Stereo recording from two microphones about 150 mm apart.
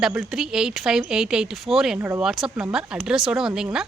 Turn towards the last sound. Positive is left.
turn(degrees=-5)  # may be behind; listen again after turning